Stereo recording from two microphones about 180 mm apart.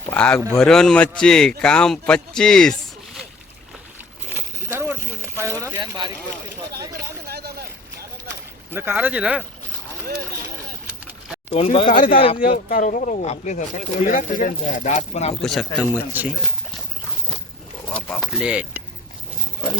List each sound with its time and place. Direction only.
0.1 s a man's voice: 5° left (ahead or behind)
4.3 s a sound: 10° right (ahead or behind)
7.0 s a sound: 60° right (ahead or behind)
8.7 s speech: 10° right (ahead or behind)
11.5 s speech: 30° left (ahead or behind)
11.9 s speech: 50° left (ahead or behind)
15.4 s a man's voice: centre (ahead or behind)
17.9 s speech: 5° left (ahead or behind)